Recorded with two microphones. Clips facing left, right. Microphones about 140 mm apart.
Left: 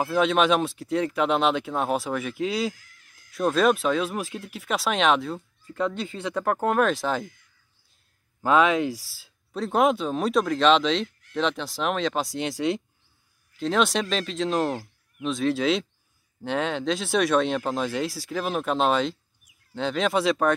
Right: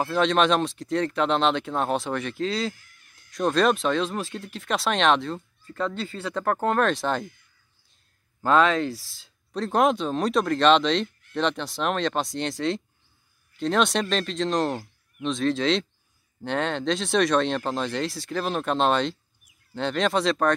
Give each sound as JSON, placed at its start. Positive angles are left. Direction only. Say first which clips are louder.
{"t": 0.0, "sound": "speech", "louder": "even", "side_deg": 5}
{"t": 2.7, "sound": "fowl", "louder": "right 1 dB", "side_deg": 90}
{"t": 3.3, "sound": "speech", "louder": "even", "side_deg": 5}
{"t": 8.4, "sound": "speech", "louder": "even", "side_deg": 10}